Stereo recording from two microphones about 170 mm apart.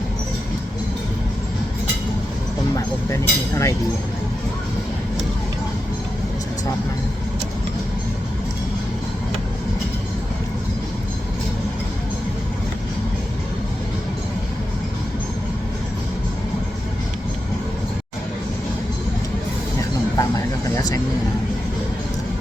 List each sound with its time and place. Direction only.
2.7 s speech: 15° left (ahead or behind)
20.1 s music: 20° left (ahead or behind)